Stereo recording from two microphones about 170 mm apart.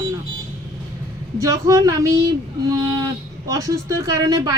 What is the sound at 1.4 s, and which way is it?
Speech, 20° right (ahead or behind).